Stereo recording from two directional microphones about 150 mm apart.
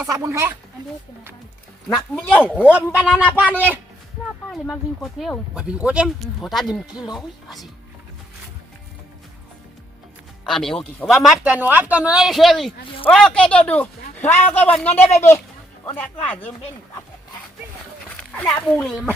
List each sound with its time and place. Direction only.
0.1 s speech: 20° right (ahead or behind)
2.6 s speech: 10° right (ahead or behind)
4.5 s speech: centre (ahead or behind)
10.4 s speech: centre (ahead or behind)
18.2 s speech: 5° left (ahead or behind)